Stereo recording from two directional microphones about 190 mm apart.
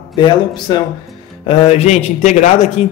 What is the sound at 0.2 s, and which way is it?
A man's voice, 25° left (ahead or behind).